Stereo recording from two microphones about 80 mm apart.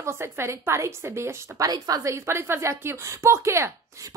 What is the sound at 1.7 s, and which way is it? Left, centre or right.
Speech, right.